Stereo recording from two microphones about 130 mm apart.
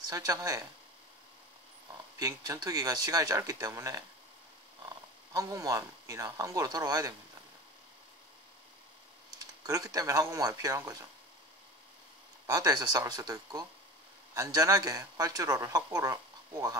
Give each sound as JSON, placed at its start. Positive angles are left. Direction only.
{"t": 0.1, "sound": "speech", "side_deg": -25}
{"t": 2.1, "sound": "speech", "side_deg": -30}
{"t": 5.3, "sound": "speech", "side_deg": -25}
{"t": 9.4, "sound": "speech", "side_deg": -25}
{"t": 12.4, "sound": "speech", "side_deg": -30}